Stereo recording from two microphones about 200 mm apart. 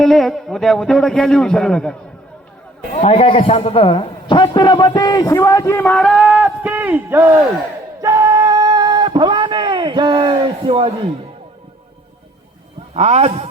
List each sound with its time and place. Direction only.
0.0 s a man's voice: centre (ahead or behind)
3.0 s a man's voice: 30° left (ahead or behind); by 7.3 s 10° right (ahead or behind)
8.0 s a sound: 15° right (ahead or behind)
12.9 s a man's voice: 30° right (ahead or behind)